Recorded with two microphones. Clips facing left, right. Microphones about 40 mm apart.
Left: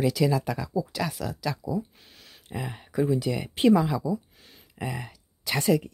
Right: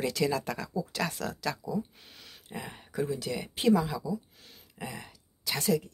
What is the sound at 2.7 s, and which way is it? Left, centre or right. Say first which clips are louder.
Speech: left 7 dB; left.